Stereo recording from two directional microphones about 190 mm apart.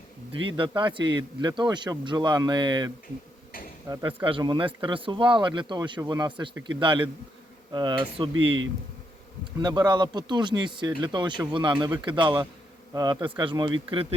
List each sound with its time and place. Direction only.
0.3 s speech: 25° right (ahead or behind)
9.6 s speech: 20° right (ahead or behind)